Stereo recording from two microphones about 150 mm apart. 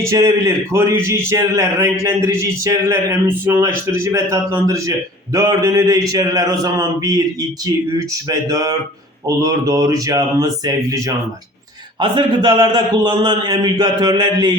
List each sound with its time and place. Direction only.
0.0 s speech: 20° right (ahead or behind)